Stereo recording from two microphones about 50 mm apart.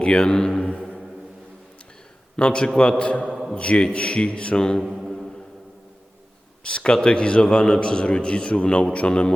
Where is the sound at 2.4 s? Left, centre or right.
Centre.